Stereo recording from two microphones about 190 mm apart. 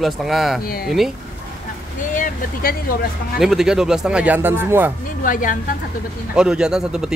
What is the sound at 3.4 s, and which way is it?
Speech, centre (ahead or behind).